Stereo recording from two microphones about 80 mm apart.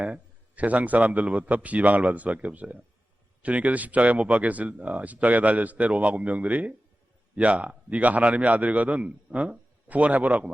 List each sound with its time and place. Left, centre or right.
0.0 s a man's voice: centre